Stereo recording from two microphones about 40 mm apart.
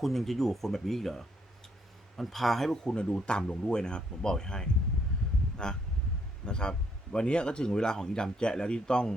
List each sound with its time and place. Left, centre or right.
0.0 s speech: centre
2.8 s a man's voice: left
6.4 s a man's voice: left